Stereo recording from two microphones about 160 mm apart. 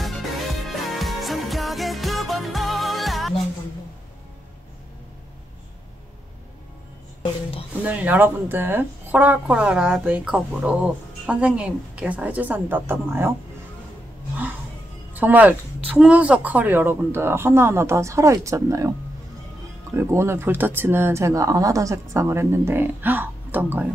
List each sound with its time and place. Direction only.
0.0 s music: centre (ahead or behind)
7.8 s speech: 10° right (ahead or behind)
15.1 s speech: 10° right (ahead or behind)
20.0 s speech: 15° right (ahead or behind)